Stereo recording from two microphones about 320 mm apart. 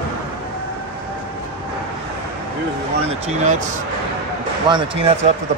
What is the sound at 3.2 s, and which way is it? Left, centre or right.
Speech, right.